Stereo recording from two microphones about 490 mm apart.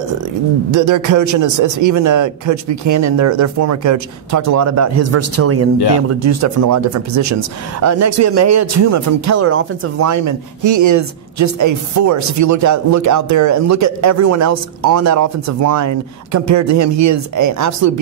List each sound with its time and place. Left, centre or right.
0.7 s speech: right